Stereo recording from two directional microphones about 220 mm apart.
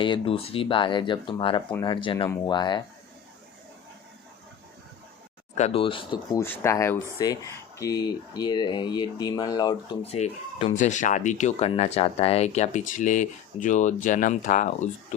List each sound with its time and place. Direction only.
0.0 s speech: 25° left (ahead or behind)
5.5 s speech: 30° left (ahead or behind)
6.4 s speech: 10° left (ahead or behind); by 14.8 s 35° left (ahead or behind)